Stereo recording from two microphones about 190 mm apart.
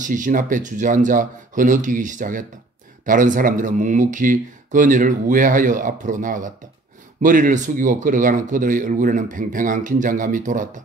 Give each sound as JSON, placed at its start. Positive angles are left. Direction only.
{"t": 0.0, "sound": "speech", "side_deg": -45}